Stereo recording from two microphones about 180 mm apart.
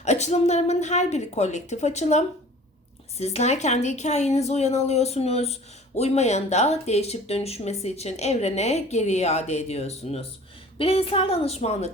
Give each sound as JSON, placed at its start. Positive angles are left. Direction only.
{"t": 0.0, "sound": "speech", "side_deg": 40}